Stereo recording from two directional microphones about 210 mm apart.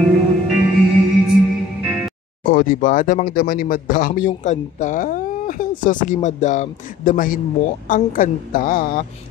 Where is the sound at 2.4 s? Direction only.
40° left (ahead or behind).